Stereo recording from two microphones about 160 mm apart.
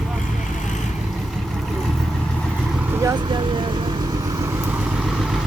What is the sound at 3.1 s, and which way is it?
Vehicle, 30° right (ahead or behind).